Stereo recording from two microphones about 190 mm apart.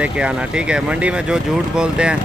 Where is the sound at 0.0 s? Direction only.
5° right (ahead or behind).